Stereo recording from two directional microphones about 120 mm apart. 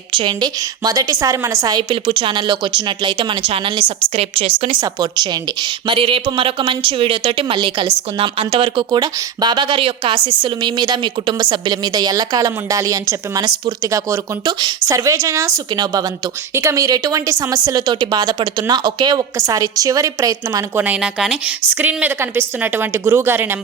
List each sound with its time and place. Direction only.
0.2 s speech: 40° right (ahead or behind)
1.9 s a woman's voice: 45° right (ahead or behind)
4.8 s a woman's voice: 35° right (ahead or behind)
20.7 s a woman's voice: 10° right (ahead or behind)